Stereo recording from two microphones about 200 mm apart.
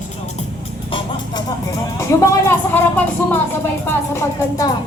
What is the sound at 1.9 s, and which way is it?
Speech, 15° left (ahead or behind).